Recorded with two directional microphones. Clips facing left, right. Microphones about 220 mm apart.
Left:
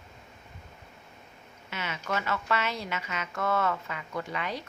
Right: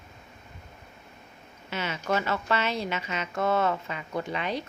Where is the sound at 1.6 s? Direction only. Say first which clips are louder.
Right 5 dB; 30° right (ahead or behind).